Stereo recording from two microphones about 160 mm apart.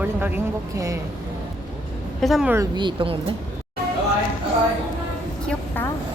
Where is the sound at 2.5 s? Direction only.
25° right (ahead or behind).